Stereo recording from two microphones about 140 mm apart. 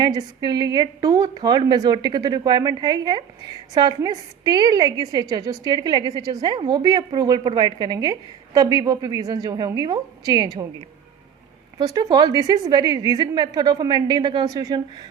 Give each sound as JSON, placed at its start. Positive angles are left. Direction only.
{"t": 0.0, "sound": "a woman's voice", "side_deg": -30}
{"t": 11.8, "sound": "a woman's voice", "side_deg": -30}